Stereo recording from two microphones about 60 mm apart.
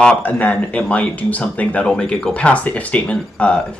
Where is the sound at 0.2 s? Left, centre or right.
Left.